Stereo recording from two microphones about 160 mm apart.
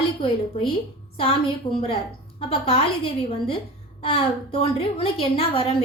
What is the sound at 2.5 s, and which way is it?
Speech, 35° left (ahead or behind).